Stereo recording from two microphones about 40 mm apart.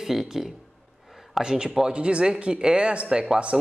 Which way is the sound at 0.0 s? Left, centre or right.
Centre.